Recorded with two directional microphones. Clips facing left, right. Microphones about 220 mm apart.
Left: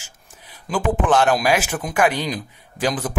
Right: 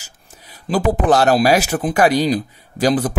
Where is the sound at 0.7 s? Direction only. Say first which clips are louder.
Right 4 dB; 40° right (ahead or behind).